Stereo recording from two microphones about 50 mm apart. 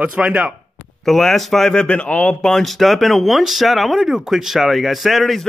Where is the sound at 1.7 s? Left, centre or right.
Left.